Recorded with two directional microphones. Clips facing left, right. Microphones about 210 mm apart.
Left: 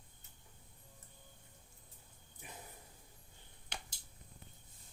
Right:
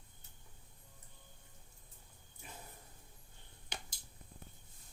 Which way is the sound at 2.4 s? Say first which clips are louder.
Even; 15° left (ahead or behind).